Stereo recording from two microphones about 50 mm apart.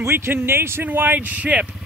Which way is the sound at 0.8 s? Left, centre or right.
Right.